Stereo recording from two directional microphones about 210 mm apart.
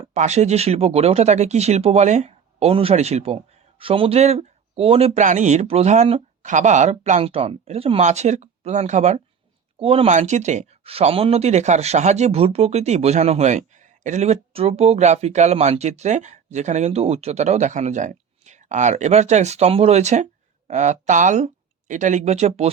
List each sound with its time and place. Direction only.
0.0 s speech: 30° right (ahead or behind)